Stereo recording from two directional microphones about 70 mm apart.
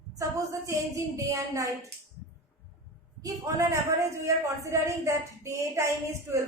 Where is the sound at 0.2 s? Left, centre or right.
Right.